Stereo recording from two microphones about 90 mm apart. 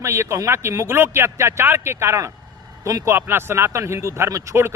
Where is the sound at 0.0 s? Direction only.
30° right (ahead or behind).